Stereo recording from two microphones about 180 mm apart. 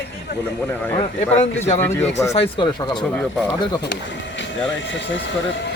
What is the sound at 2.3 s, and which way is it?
Speech, 30° left (ahead or behind).